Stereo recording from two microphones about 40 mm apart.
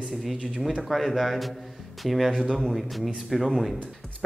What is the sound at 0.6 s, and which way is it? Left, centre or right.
Speech, centre.